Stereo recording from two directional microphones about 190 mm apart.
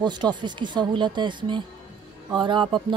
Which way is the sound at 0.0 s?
25° right (ahead or behind).